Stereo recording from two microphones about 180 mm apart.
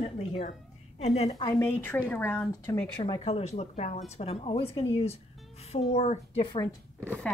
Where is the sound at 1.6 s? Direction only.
15° left (ahead or behind).